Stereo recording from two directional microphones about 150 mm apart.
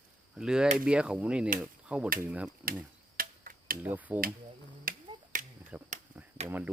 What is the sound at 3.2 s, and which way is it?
Tick-tock, 75° right (ahead or behind).